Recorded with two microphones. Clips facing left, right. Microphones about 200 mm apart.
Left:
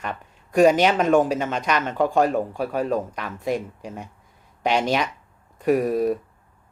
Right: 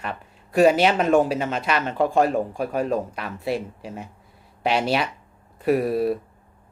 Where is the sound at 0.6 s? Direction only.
10° right (ahead or behind).